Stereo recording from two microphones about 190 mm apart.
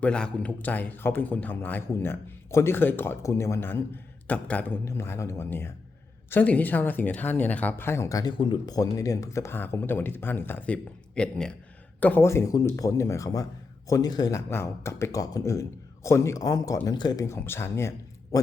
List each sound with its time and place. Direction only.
0.0 s speech: 5° left (ahead or behind)